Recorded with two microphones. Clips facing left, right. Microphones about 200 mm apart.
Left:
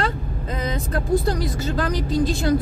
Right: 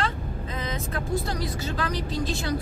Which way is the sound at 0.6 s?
40° left (ahead or behind).